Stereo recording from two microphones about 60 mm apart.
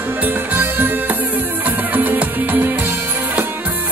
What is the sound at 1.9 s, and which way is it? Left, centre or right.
Music, right.